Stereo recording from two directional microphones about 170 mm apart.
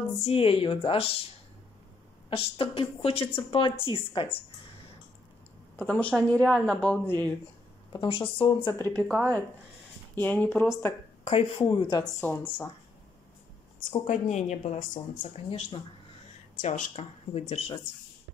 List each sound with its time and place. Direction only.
0.2 s speech: 35° left (ahead or behind)
2.2 s speech: 35° left (ahead or behind)
5.8 s speech: 10° left (ahead or behind)
7.9 s speech: 30° left (ahead or behind)
8.7 s speech: 10° left (ahead or behind)
11.2 s speech: 35° left (ahead or behind)
12.0 s speech: 10° left (ahead or behind)
14.0 s a woman's voice: 45° left (ahead or behind)